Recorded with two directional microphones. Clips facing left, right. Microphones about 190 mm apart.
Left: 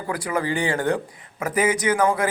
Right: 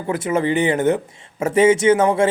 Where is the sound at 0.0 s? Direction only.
25° right (ahead or behind).